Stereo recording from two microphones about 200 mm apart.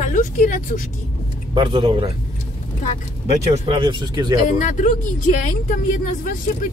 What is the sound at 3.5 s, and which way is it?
Speech, 25° right (ahead or behind).